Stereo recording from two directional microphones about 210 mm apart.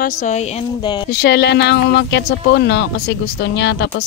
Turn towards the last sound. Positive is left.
turn(degrees=55)  # may be behind; listen again after turning